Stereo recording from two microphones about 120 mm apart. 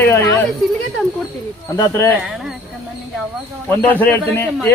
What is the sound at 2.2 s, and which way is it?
Speech, 5° right (ahead or behind).